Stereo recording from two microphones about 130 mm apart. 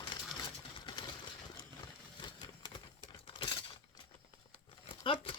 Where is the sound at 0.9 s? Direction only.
35° left (ahead or behind).